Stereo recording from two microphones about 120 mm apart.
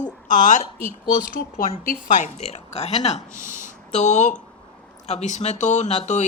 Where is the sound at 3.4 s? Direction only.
90° left; by 6.3 s 75° left (ahead or behind).